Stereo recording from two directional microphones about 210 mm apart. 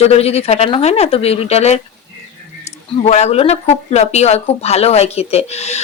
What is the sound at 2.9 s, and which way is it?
Speech, 30° left (ahead or behind).